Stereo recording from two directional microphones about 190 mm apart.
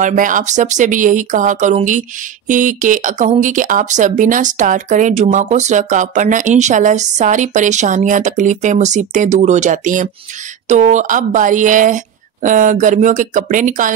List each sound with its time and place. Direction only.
0.0 s speech: 45° right (ahead or behind)